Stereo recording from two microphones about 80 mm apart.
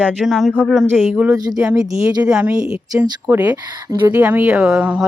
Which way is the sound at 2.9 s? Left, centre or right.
Right.